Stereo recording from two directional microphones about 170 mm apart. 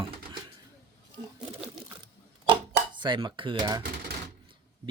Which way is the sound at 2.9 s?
30° right (ahead or behind).